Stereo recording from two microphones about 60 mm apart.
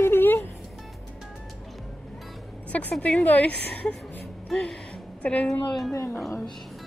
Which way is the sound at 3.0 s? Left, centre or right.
Left.